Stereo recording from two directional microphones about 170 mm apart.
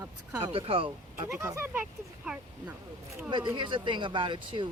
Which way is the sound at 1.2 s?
15° right (ahead or behind).